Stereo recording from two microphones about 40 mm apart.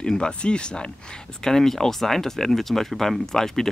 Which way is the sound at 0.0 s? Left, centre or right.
Centre.